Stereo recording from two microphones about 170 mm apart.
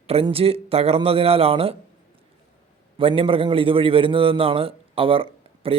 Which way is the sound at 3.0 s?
30° right (ahead or behind).